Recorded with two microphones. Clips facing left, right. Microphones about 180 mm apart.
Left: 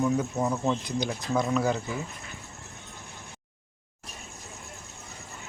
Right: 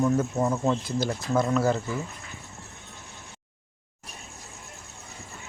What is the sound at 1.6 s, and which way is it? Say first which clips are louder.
Speech: right 2 dB; 15° left (ahead or behind).